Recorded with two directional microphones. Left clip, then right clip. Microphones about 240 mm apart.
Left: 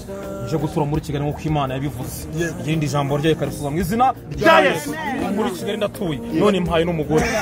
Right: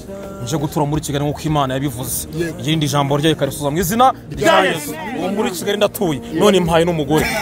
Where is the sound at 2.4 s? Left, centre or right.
Right.